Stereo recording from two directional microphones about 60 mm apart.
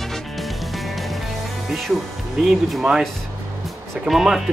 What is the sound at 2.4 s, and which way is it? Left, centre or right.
Speech, centre.